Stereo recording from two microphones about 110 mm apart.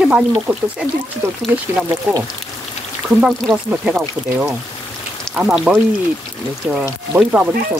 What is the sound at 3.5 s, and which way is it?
Speech, 15° right (ahead or behind).